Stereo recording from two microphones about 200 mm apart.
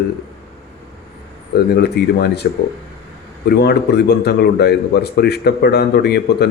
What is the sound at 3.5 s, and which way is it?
A man's voice, 55° left (ahead or behind).